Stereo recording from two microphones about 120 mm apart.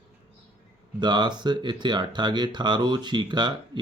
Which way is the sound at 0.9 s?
40° right (ahead or behind).